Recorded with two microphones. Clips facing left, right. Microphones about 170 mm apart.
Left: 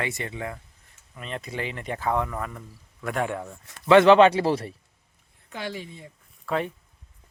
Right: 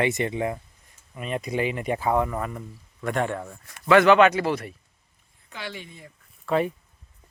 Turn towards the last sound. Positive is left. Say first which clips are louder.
# right 4 dB
turn(degrees=-5)  # may be behind; listen again after turning